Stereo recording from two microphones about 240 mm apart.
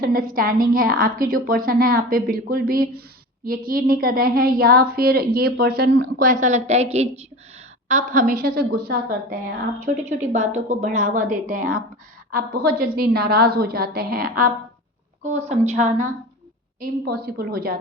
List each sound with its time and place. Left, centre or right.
0.0 s a woman's voice: right
9.8 s a woman's voice: right
15.2 s a woman's voice: right
17.2 s a woman's voice: right